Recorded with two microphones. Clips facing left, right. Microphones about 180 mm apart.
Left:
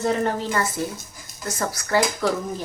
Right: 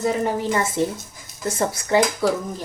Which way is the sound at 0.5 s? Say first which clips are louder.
Right 3 dB; 25° right (ahead or behind).